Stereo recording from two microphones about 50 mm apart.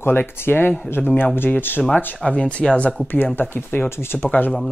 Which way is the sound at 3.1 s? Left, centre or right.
Left.